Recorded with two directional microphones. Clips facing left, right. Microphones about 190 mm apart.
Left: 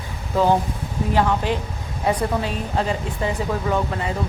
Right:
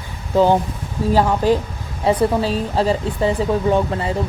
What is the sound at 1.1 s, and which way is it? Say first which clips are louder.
A woman's voice: right 5 dB; 35° right (ahead or behind).